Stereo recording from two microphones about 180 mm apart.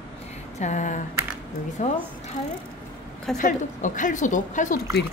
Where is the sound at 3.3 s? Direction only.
45° left (ahead or behind).